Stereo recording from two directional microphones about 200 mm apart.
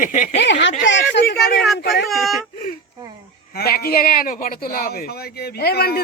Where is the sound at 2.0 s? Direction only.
Centre (ahead or behind).